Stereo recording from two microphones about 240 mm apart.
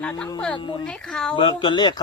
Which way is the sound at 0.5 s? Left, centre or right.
Centre.